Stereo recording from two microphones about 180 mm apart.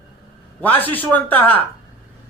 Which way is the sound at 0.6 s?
10° left (ahead or behind).